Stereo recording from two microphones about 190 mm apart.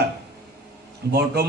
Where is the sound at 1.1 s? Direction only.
55° right (ahead or behind).